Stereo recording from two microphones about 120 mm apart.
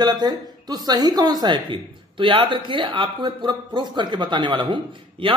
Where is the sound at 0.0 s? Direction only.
35° right (ahead or behind).